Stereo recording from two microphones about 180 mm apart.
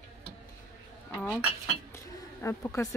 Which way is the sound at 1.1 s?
10° left (ahead or behind).